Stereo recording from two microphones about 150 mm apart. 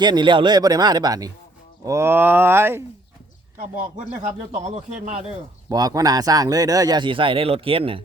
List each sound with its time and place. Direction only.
0.0 s speech: 30° right (ahead or behind)
4.5 s a man's voice: 50° right (ahead or behind)
5.6 s speech: 25° right (ahead or behind)